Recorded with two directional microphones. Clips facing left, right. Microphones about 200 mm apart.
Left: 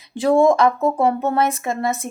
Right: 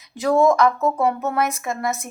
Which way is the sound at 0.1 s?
30° left (ahead or behind).